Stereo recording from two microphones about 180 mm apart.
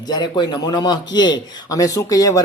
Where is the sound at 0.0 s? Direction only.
25° left (ahead or behind).